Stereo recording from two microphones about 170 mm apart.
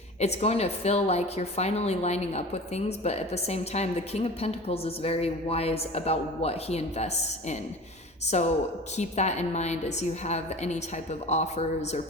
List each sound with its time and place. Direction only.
0.2 s a woman's voice: 40° left (ahead or behind)